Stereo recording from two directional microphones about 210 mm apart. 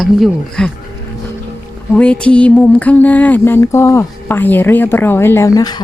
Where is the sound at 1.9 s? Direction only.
5° left (ahead or behind).